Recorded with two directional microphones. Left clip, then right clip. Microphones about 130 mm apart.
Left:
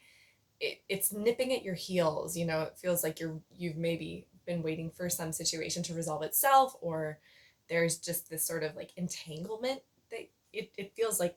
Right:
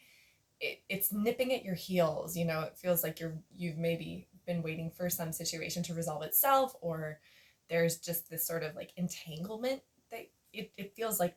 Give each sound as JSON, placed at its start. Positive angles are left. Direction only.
{"t": 0.6, "sound": "speech", "side_deg": 20}